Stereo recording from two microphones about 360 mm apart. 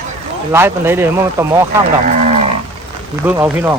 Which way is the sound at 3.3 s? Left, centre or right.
Centre.